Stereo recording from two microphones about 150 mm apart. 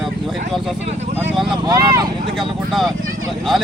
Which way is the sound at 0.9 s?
45° right (ahead or behind).